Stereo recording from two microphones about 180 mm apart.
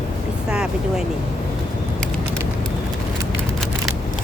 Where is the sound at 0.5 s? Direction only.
5° right (ahead or behind).